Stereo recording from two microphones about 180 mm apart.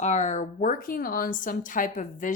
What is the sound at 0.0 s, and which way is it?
Speech, 40° left (ahead or behind).